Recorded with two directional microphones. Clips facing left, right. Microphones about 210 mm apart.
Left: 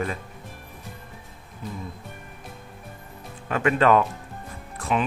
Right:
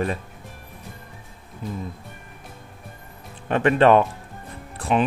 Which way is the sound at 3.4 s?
30° right (ahead or behind).